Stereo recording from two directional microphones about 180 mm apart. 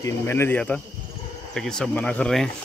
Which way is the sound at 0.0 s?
15° left (ahead or behind).